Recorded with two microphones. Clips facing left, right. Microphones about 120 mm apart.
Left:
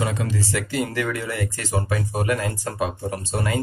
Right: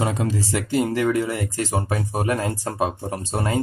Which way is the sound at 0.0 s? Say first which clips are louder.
Right 2 dB; 35° right (ahead or behind).